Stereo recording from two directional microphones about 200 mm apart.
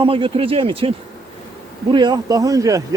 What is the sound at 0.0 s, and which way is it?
Speech, 25° right (ahead or behind).